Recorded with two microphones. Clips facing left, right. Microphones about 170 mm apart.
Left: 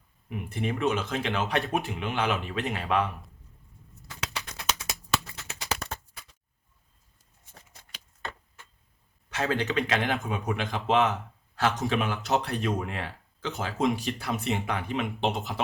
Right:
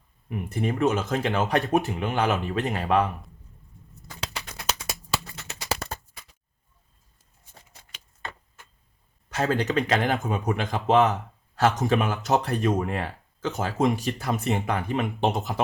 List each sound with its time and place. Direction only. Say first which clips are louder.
0.3 s speech: right 3 dB; 40° right (ahead or behind)
5.5 s a sound: right 3 dB; 35° right (ahead or behind)
9.3 s speech: right 3 dB; 40° right (ahead or behind)